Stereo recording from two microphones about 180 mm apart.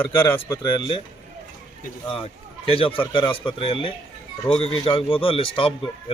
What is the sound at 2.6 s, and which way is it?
A man's voice, 30° left (ahead or behind).